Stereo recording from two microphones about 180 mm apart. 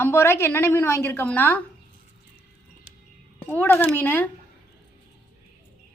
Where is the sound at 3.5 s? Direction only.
10° left (ahead or behind).